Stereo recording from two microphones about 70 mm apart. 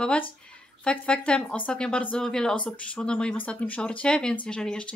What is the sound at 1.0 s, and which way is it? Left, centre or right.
Speech, centre.